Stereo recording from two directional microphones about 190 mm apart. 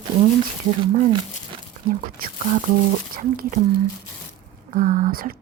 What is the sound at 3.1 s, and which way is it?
Speech, 50° right (ahead or behind).